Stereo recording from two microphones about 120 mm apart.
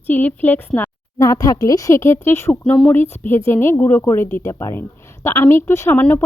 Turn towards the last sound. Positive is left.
turn(degrees=15)  # may be behind; listen again after turning